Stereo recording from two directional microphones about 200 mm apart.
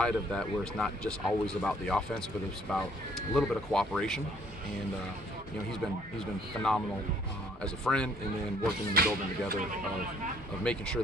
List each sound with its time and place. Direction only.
0.0 s speech: 5° left (ahead or behind)
5.7 s speech: centre (ahead or behind)
8.9 s speech: 50° right (ahead or behind)
10.6 s speech: 5° left (ahead or behind)